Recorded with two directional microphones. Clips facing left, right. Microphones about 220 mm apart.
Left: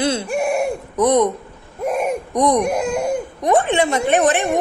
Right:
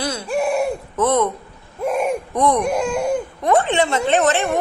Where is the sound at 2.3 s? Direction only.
15° left (ahead or behind).